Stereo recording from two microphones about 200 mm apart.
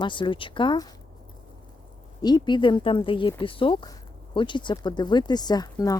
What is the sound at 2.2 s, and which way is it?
Speech, 20° left (ahead or behind).